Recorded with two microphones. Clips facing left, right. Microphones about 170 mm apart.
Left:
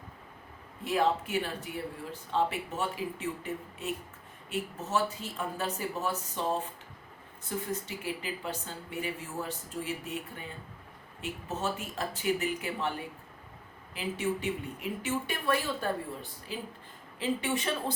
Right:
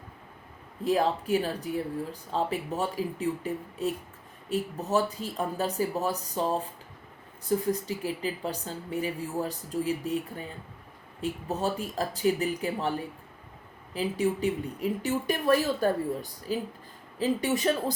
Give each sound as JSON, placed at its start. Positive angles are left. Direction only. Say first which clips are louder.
{"t": 0.9, "sound": "speech", "louder": "right 3 dB", "side_deg": -35}
{"t": 13.9, "sound": "speech", "louder": "right 5 dB", "side_deg": -35}